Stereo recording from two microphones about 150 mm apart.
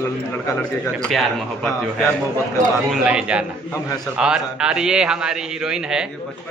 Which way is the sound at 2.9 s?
5° right (ahead or behind).